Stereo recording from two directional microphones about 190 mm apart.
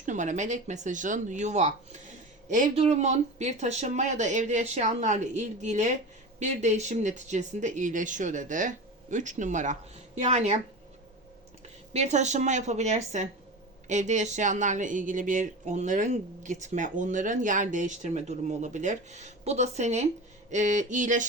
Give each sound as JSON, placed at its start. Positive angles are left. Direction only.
{"t": 0.0, "sound": "speech", "side_deg": -40}
{"t": 11.9, "sound": "speech", "side_deg": -35}